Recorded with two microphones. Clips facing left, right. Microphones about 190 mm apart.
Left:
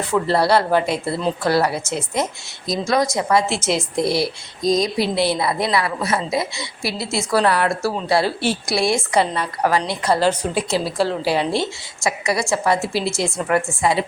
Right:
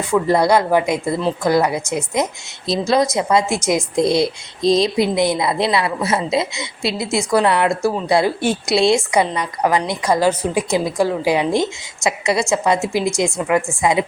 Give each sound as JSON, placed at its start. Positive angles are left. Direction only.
{"t": 0.1, "sound": "a woman's voice", "side_deg": -15}
{"t": 2.6, "sound": "a woman's voice", "side_deg": -25}
{"t": 5.0, "sound": "a woman's voice", "side_deg": -15}